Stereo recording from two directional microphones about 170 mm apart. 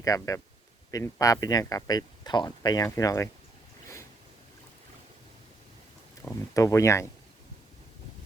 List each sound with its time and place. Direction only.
0.0 s speech: 20° left (ahead or behind)
6.5 s speech: 20° left (ahead or behind)